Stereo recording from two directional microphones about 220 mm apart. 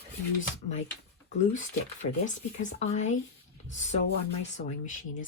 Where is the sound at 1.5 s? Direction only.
35° left (ahead or behind).